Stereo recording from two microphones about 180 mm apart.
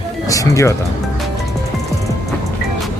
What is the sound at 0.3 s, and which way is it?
Speech, 15° left (ahead or behind).